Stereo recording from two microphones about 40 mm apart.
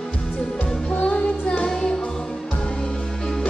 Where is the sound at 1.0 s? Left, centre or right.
Left.